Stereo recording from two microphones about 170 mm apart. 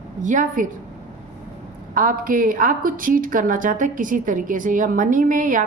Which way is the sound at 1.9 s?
55° right (ahead or behind).